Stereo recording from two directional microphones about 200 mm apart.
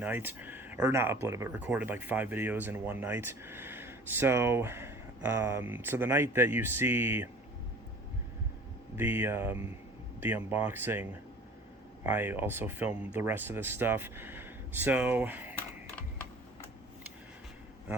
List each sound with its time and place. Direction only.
0.0 s speech: 10° right (ahead or behind)
9.0 s speech: 10° right (ahead or behind)